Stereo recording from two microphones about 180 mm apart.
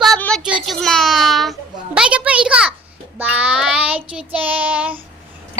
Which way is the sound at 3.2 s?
10° right (ahead or behind).